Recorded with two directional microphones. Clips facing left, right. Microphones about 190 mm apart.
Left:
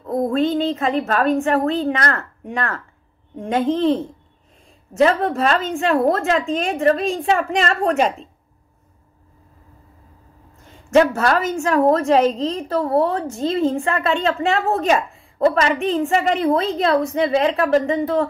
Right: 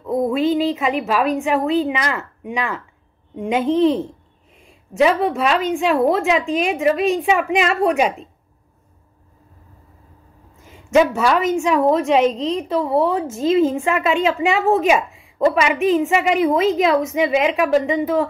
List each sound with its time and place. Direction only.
0.0 s a woman's voice: 5° right (ahead or behind)
10.6 s a woman's voice: 5° right (ahead or behind)
13.1 s a woman's voice: 15° right (ahead or behind)
14.8 s a woman's voice: 5° right (ahead or behind)